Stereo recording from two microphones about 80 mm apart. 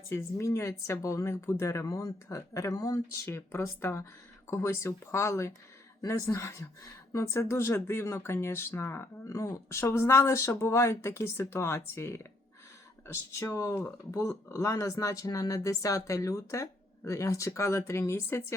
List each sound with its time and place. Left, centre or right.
0.1 s speech: left
3.2 s speech: left
13.4 s speech: left
13.7 s speech: centre
14.2 s speech: left